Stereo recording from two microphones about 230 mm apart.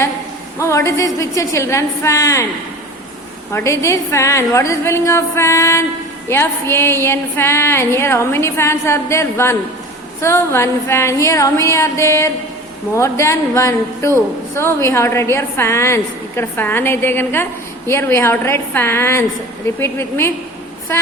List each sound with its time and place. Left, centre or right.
0.6 s a woman's voice: centre
3.5 s a woman's voice: centre